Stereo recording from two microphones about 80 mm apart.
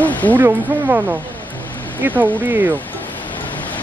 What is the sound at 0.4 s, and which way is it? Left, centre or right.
Speech, right.